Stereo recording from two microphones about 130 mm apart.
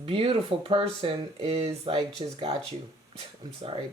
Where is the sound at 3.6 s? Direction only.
45° right (ahead or behind).